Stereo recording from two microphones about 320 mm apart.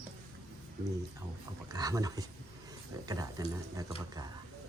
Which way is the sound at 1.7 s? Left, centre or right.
Centre.